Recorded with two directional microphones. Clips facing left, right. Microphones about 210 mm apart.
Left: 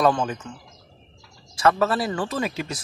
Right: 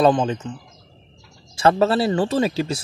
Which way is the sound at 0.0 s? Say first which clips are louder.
Right 4 dB; 20° right (ahead or behind).